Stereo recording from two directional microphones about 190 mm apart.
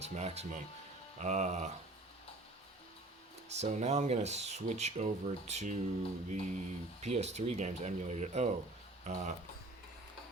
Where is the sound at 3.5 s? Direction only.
35° right (ahead or behind).